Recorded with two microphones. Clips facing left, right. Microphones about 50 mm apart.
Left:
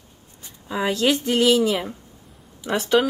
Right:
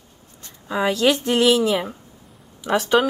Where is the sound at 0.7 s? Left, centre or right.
Centre.